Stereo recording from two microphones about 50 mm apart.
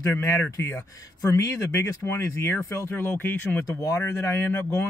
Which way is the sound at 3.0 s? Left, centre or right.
Left.